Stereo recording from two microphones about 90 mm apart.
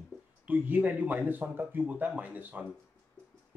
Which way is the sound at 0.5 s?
20° right (ahead or behind).